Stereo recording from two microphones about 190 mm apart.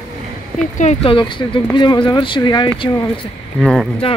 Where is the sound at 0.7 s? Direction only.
35° left (ahead or behind).